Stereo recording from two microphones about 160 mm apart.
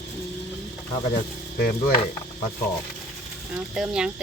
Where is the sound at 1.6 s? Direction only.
65° left (ahead or behind).